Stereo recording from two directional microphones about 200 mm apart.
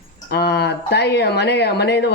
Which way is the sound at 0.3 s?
55° left (ahead or behind).